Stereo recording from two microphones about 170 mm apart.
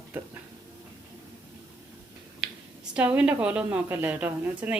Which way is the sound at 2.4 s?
5° right (ahead or behind).